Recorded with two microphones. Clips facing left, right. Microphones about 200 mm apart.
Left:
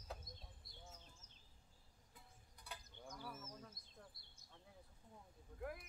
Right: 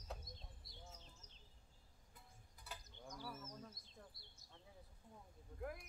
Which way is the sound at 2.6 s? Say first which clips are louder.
Even; centre (ahead or behind).